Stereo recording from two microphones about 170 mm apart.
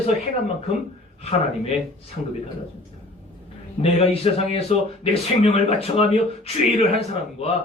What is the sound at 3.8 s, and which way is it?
Speech, 35° left (ahead or behind).